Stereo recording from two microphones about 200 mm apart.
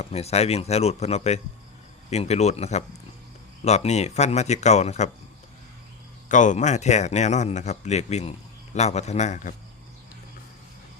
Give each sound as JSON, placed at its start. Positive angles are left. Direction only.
{"t": 0.0, "sound": "speech", "side_deg": 30}
{"t": 6.2, "sound": "speech", "side_deg": 40}